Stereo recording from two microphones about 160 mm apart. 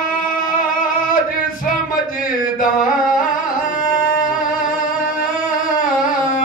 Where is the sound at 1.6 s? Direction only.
60° left (ahead or behind).